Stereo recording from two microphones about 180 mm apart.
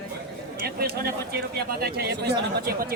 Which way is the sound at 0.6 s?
60° right (ahead or behind).